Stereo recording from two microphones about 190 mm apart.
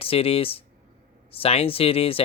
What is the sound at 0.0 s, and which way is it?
Speech, 30° left (ahead or behind).